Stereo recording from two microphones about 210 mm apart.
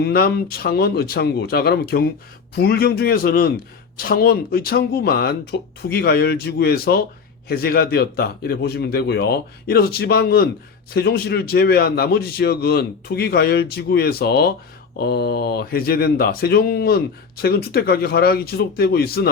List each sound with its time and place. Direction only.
0.0 s speech: 50° left (ahead or behind)